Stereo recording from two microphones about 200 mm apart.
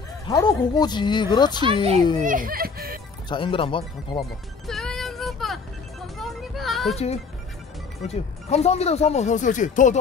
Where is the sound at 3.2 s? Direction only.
25° left (ahead or behind).